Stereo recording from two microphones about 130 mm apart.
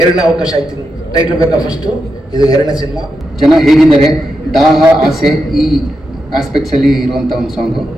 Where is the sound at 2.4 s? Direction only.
30° left (ahead or behind).